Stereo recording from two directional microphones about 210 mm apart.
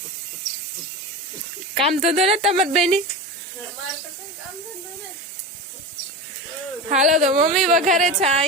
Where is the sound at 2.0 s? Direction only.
30° right (ahead or behind).